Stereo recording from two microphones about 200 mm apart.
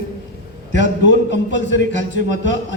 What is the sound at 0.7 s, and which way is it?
A man's voice, 65° left (ahead or behind).